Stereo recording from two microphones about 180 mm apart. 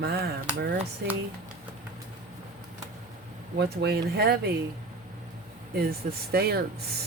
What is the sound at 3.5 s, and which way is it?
Speech, 65° right (ahead or behind).